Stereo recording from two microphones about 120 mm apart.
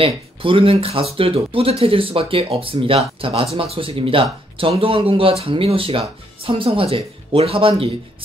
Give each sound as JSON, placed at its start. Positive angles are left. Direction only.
{"t": 0.0, "sound": "speech", "side_deg": -50}